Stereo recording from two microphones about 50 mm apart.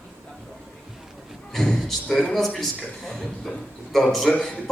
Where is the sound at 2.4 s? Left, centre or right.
Centre.